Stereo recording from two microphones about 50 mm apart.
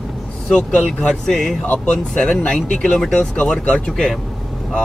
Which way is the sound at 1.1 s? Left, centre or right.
Centre.